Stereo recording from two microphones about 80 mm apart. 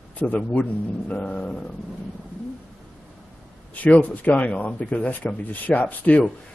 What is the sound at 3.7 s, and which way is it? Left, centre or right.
A man's voice, centre.